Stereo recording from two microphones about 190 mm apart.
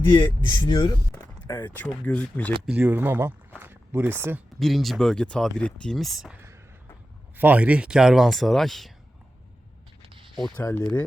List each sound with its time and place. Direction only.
0.1 s speech: 25° left (ahead or behind)
1.1 s a sound: 20° left (ahead or behind)
1.7 s speech: 10° left (ahead or behind)
2.6 s speech: 10° right (ahead or behind)
4.6 s speech: centre (ahead or behind)
10.0 s a sound: 25° right (ahead or behind)
10.5 s speech: 10° left (ahead or behind)